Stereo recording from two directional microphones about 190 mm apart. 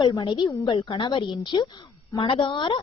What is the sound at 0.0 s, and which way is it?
Speech, 20° left (ahead or behind).